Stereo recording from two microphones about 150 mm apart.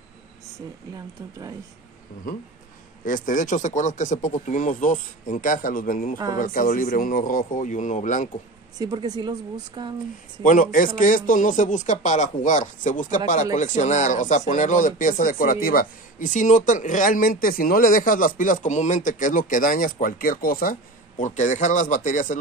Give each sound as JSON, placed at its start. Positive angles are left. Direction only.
{"t": 3.1, "sound": "speech", "side_deg": 60}
{"t": 8.7, "sound": "speech", "side_deg": -25}
{"t": 10.4, "sound": "speech", "side_deg": 60}
{"t": 21.2, "sound": "speech", "side_deg": 55}